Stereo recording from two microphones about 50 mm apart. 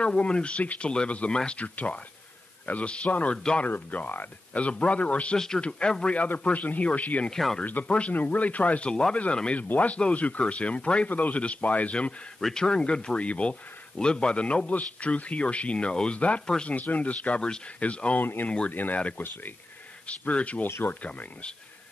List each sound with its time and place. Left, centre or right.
0.0 s speech: left
6.1 s speech: left
7.2 s speech: centre
8.1 s speech: left
12.4 s speech: centre
18.2 s speech: left
20.1 s speech: left
20.6 s speech: left
21.0 s speech: left